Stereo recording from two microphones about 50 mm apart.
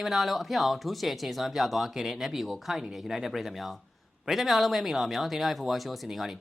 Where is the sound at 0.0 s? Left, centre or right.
Centre.